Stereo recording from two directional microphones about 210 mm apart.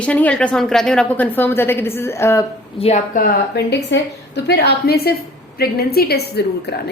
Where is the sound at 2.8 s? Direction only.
30° left (ahead or behind).